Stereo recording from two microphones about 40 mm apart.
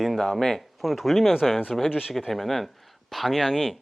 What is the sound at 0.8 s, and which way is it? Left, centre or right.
Speech, centre.